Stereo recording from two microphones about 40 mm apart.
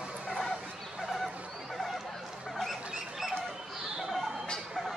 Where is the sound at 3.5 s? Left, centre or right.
Centre.